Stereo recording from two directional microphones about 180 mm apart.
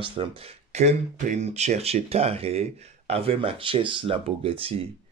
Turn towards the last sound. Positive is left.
turn(degrees=-30)  # may be behind; listen again after turning